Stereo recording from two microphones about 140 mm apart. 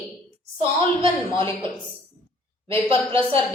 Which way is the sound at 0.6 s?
40° right (ahead or behind).